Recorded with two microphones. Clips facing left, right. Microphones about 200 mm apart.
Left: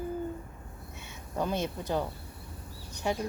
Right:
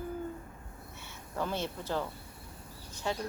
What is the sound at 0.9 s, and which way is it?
A woman's voice, 15° left (ahead or behind).